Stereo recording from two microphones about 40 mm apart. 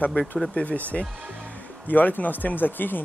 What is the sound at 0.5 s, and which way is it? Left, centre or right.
Speech, left.